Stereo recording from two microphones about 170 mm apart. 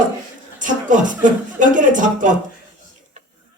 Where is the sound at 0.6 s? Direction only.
50° right (ahead or behind).